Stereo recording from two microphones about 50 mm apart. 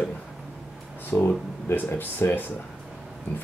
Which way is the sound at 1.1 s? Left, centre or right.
Left.